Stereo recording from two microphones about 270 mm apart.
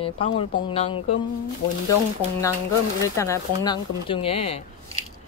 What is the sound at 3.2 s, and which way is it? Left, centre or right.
Speech, centre.